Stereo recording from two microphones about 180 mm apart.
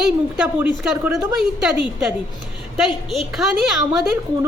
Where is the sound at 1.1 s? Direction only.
20° right (ahead or behind).